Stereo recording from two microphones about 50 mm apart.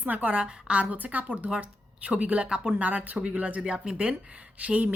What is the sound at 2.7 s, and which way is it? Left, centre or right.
Speech, right.